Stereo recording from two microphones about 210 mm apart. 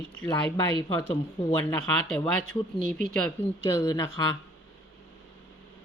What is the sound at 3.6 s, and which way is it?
Speech, 15° left (ahead or behind).